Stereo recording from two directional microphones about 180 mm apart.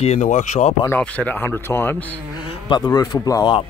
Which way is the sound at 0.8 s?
10° left (ahead or behind).